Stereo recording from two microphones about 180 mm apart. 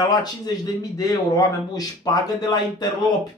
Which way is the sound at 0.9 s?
20° left (ahead or behind).